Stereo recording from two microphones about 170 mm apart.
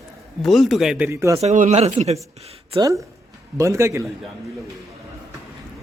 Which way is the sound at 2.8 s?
20° right (ahead or behind).